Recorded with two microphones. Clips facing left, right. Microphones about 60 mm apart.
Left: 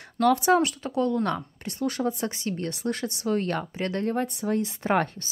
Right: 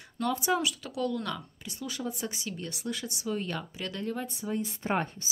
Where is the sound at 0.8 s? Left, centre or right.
Left.